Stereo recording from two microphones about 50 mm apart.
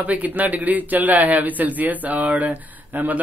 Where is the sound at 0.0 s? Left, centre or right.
Right.